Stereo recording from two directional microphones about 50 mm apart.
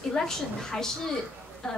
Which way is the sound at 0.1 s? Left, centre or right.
Centre.